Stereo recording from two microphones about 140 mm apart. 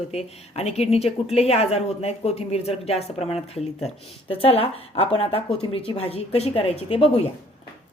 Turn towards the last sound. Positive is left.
turn(degrees=45)  # may be behind; listen again after turning